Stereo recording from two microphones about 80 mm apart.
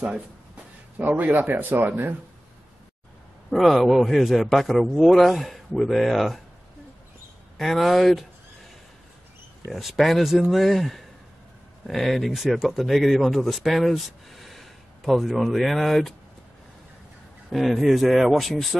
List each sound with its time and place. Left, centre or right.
0.9 s speech: right
3.4 s a man's voice: centre
7.5 s a man's voice: centre
9.7 s a man's voice: centre
17.5 s a man's voice: centre